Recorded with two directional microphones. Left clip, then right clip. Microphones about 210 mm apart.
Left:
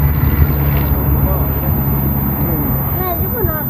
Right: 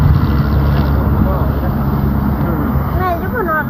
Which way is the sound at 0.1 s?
50° right (ahead or behind).